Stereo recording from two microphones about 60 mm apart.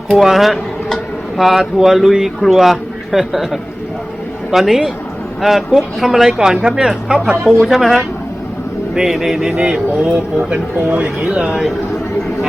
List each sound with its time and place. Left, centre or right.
0.1 s a man's voice: centre